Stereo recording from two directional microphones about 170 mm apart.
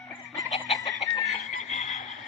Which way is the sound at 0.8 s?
20° left (ahead or behind).